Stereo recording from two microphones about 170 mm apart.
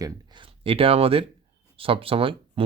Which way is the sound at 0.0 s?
25° right (ahead or behind).